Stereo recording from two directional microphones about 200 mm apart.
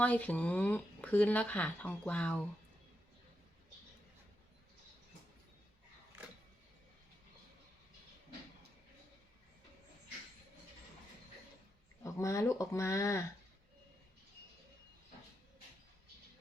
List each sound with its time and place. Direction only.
0.0 s speech: 5° left (ahead or behind)
12.0 s speech: 15° left (ahead or behind)